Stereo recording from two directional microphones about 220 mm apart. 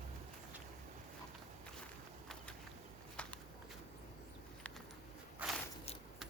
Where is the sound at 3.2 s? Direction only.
5° left (ahead or behind).